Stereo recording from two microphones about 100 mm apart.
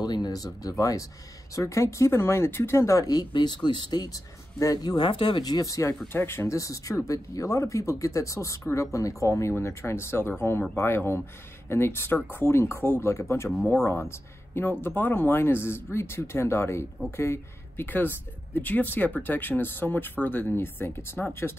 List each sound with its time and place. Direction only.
0.0 s speech: 45° left (ahead or behind); by 21.5 s 25° left (ahead or behind)